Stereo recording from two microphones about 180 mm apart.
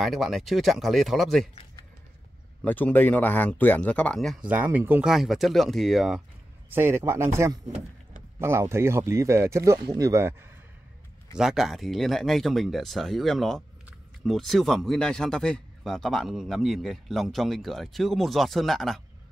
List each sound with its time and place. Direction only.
0.0 s speech: centre (ahead or behind)
2.6 s speech: 10° left (ahead or behind)
4.5 s speech: 10° right (ahead or behind)
6.7 s speech: 10° right (ahead or behind)
11.3 s speech: centre (ahead or behind)